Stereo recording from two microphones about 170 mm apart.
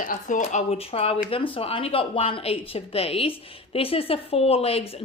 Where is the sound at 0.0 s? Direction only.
50° left (ahead or behind).